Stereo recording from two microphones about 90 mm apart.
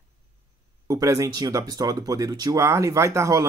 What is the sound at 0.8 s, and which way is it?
Speech, 40° right (ahead or behind).